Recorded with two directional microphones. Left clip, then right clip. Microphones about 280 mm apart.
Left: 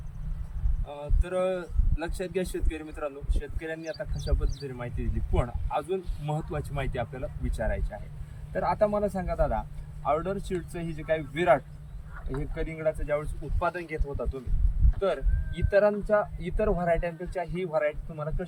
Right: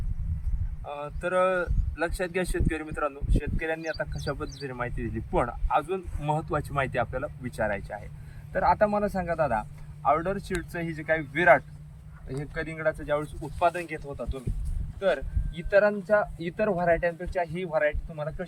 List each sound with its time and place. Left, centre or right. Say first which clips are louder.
0.9 s a man's voice: right 5 dB; centre